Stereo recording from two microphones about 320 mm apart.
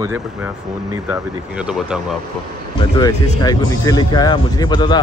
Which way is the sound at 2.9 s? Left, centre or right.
Centre.